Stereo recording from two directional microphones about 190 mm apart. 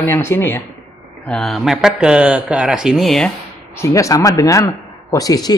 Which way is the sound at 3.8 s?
15° left (ahead or behind).